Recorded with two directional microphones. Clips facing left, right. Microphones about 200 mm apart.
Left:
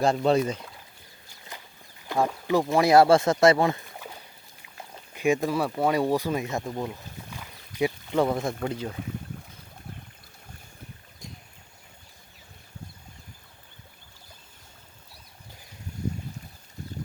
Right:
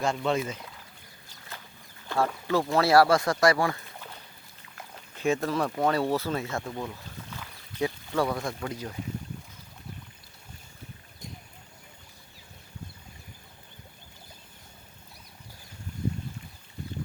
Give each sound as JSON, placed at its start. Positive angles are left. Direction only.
{"t": 0.0, "sound": "speech", "side_deg": 35}
{"t": 1.5, "sound": "a sound", "side_deg": 15}
{"t": 2.0, "sound": "speech", "side_deg": 15}
{"t": 5.1, "sound": "speech", "side_deg": 15}